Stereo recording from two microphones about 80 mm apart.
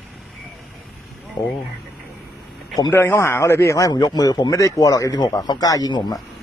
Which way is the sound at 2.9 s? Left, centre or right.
Left.